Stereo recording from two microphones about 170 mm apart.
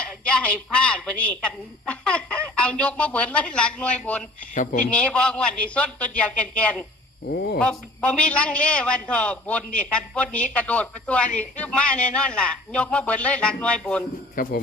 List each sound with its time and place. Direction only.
0.0 s a woman's voice: 5° left (ahead or behind)
4.5 s speech: 50° left (ahead or behind)
4.9 s a man's voice: 5° left (ahead or behind)
7.3 s speech: 70° left (ahead or behind)
7.6 s a man's voice: 5° left (ahead or behind)
14.4 s speech: 55° left (ahead or behind)